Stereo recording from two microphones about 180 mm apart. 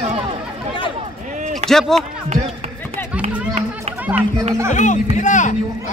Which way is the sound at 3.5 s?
40° right (ahead or behind).